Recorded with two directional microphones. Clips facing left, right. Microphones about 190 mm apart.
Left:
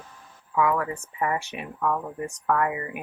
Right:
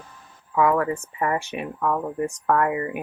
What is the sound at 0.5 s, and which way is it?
Speech, 45° right (ahead or behind).